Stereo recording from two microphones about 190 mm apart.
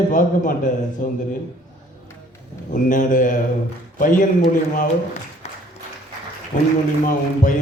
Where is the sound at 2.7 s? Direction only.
45° left (ahead or behind).